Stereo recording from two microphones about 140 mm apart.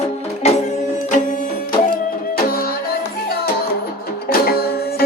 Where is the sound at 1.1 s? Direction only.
65° left (ahead or behind).